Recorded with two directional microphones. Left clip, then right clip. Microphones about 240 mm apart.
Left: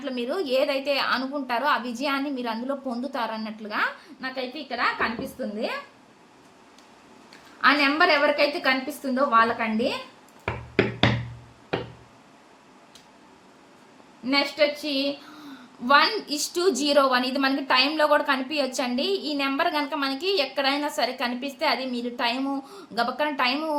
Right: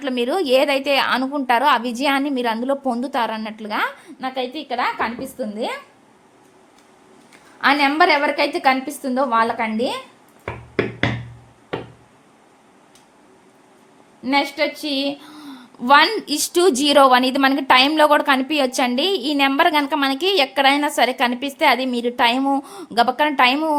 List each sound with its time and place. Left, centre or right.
0.0 s a woman's voice: right
7.6 s a woman's voice: right
14.3 s a woman's voice: right